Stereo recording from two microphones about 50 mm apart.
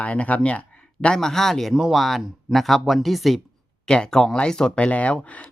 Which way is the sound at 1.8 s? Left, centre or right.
Centre.